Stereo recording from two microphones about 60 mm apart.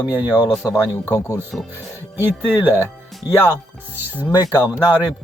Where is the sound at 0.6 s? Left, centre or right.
Left.